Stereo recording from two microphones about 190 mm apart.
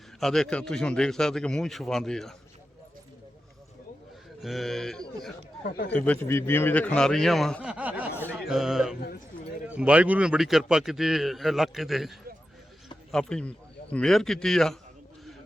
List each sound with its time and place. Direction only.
0.2 s a man's voice: centre (ahead or behind)
4.4 s a man's voice: centre (ahead or behind)
5.6 s speech: 50° left (ahead or behind)
6.1 s a man's voice: 10° left (ahead or behind)